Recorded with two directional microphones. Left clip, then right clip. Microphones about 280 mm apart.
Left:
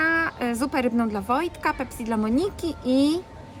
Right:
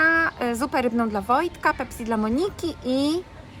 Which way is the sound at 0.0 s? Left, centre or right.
Centre.